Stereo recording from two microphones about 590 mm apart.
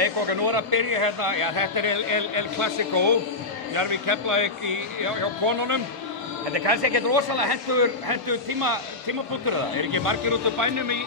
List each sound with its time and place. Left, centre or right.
0.0 s a man's voice: right
6.5 s a man's voice: right
9.9 s a man's voice: right